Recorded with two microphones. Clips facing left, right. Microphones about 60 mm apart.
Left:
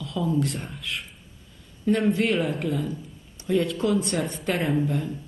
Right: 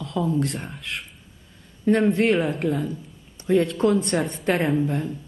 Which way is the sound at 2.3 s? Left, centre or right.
Centre.